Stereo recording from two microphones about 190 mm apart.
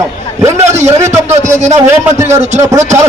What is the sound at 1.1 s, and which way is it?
Speech, 40° right (ahead or behind).